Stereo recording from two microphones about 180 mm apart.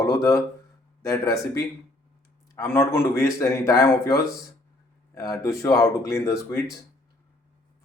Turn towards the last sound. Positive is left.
turn(degrees=15)  # may be behind; listen again after turning